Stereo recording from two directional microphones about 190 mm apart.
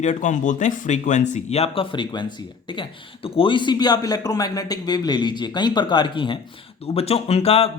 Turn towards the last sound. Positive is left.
turn(degrees=30)  # may be behind; listen again after turning